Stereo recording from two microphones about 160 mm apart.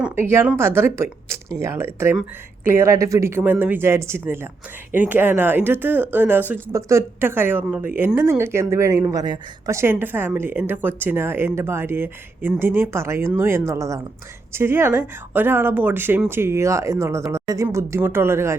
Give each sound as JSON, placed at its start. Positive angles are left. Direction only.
{"t": 0.0, "sound": "speech", "side_deg": -15}